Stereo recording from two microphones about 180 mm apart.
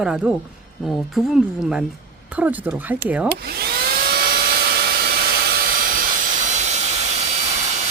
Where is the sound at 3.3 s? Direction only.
60° right (ahead or behind).